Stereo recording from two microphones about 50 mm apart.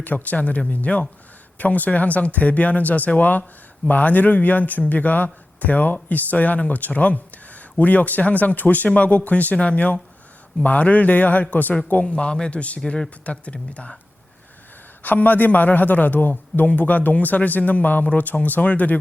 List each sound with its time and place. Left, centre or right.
0.0 s a man's voice: left
12.0 s a man's voice: centre
15.0 s speech: left